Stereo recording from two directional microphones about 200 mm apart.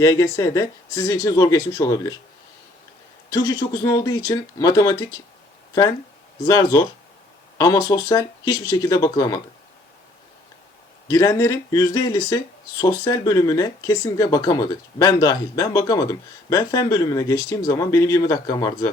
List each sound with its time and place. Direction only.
0.0 s speech: 15° left (ahead or behind)
3.2 s speech: 20° left (ahead or behind)
6.4 s speech: 15° left (ahead or behind)
11.1 s speech: 15° left (ahead or behind)